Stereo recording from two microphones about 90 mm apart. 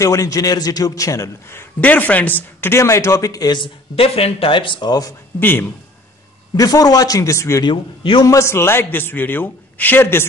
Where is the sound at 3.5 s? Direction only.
80° left; by 5.1 s 50° left (ahead or behind).